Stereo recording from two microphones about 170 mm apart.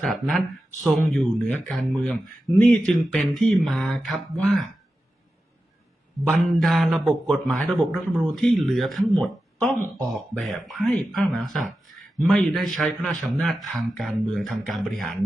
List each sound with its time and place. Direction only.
0.0 s a man's voice: centre (ahead or behind)
6.2 s a man's voice: 5° left (ahead or behind)